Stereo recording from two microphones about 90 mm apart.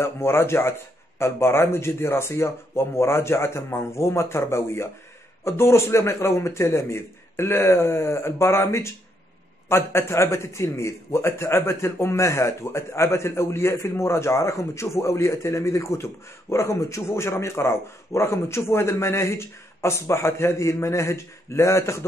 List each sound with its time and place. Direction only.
0.0 s a man's voice: 25° left (ahead or behind)